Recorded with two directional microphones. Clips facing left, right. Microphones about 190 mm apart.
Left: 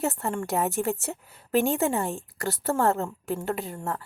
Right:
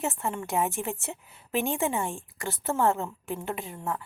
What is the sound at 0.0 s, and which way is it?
A woman's voice, 40° left (ahead or behind).